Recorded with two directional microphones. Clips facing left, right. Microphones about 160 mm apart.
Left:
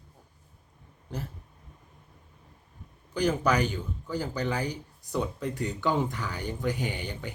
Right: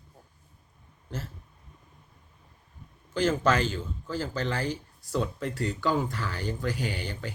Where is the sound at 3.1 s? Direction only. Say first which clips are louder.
Right 1 dB; 15° left (ahead or behind).